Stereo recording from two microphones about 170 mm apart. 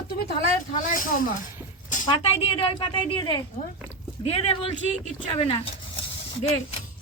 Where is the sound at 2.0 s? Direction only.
30° left (ahead or behind).